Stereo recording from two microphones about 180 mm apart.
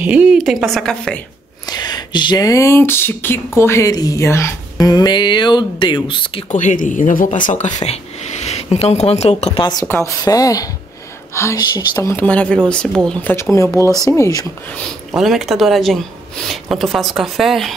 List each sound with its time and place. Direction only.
0.0 s speech: 5° right (ahead or behind)
1.7 s a sound: 25° left (ahead or behind)
6.5 s speech: 45° left (ahead or behind)
9.5 s a sound: 20° left (ahead or behind)
11.3 s a woman's voice: 20° left (ahead or behind)
15.0 s speech: centre (ahead or behind)